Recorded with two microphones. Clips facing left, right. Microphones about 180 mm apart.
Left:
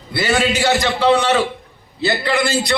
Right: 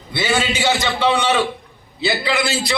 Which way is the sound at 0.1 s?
Centre (ahead or behind).